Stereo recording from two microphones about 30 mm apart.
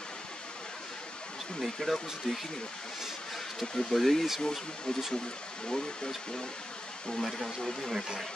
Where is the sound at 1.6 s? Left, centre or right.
Centre.